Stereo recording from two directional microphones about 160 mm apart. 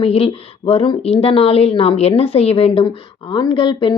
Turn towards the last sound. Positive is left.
turn(degrees=30)  # may be behind; listen again after turning